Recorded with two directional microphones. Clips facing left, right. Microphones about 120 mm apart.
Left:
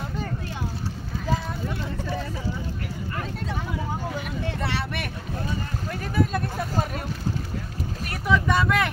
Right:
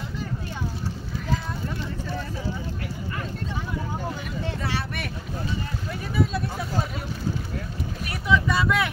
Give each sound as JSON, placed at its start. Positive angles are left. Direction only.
{"t": 4.6, "sound": "boat", "side_deg": 65}
{"t": 5.9, "sound": "a sound", "side_deg": 50}
{"t": 8.1, "sound": "vehicle", "side_deg": 50}